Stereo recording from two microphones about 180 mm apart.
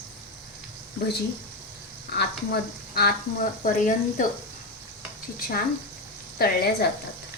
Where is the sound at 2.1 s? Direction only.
60° left (ahead or behind).